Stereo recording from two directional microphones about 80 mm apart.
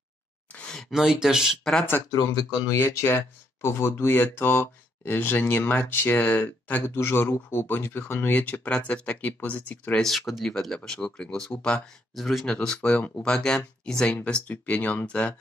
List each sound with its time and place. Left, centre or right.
0.5 s speech: centre
1.6 s speech: centre
2.0 s speech: left
2.8 s speech: left
6.9 s speech: left
9.9 s speech: centre
12.2 s speech: centre
12.4 s speech: centre